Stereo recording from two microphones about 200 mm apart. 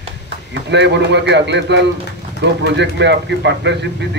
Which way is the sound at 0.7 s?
60° right (ahead or behind).